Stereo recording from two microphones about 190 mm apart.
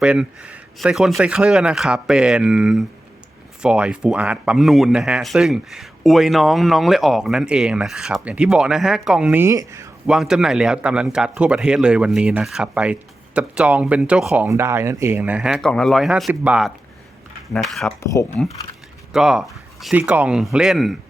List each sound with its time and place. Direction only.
0.0 s speech: 5° right (ahead or behind)
10.1 s speech: 5° right (ahead or behind)
18.0 s speech: 15° left (ahead or behind)
19.1 s speech: centre (ahead or behind)